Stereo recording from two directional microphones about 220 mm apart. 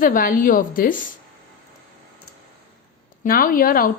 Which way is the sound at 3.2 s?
40° left (ahead or behind).